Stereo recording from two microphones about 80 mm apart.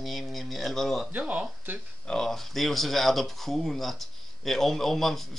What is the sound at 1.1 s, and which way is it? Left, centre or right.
Speech, centre.